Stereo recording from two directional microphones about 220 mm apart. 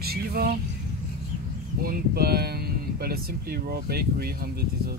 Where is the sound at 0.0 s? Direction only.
45° right (ahead or behind).